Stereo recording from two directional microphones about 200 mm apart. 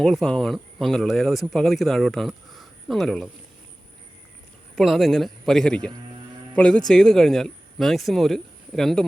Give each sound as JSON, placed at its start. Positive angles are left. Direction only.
{"t": 0.0, "sound": "speech", "side_deg": 0}
{"t": 4.7, "sound": "speech", "side_deg": 0}